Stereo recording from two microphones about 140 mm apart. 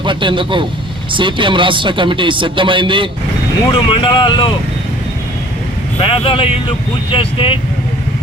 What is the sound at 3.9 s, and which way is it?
Speech, 35° left (ahead or behind).